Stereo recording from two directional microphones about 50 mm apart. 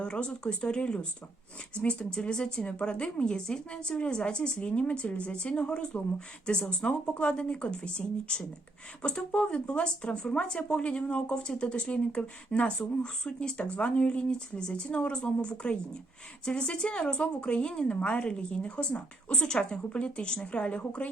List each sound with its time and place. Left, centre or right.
0.0 s speech: centre